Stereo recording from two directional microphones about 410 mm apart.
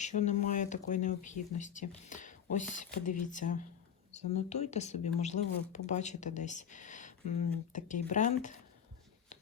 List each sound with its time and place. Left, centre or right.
0.0 s speech: centre